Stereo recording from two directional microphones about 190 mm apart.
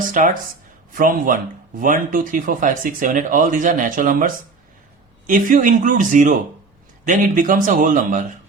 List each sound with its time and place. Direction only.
0.1 s speech: 45° right (ahead or behind)